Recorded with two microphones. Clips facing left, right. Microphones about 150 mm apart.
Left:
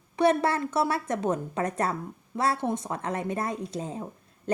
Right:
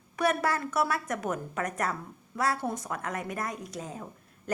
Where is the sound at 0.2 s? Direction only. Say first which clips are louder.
Left 5 dB; 25° left (ahead or behind).